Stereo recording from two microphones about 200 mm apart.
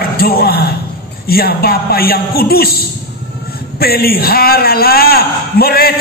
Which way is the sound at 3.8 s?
50° left (ahead or behind).